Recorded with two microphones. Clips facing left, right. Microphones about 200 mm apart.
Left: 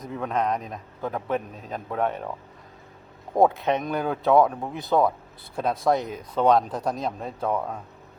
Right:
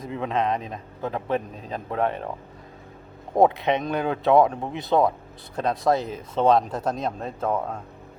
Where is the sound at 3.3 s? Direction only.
Centre (ahead or behind).